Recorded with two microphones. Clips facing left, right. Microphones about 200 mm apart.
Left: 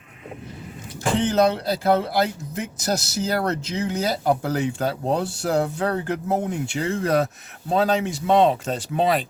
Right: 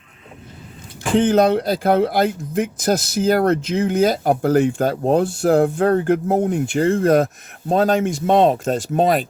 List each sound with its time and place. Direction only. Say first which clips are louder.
1.1 s speech: right 5 dB; 55° right (ahead or behind)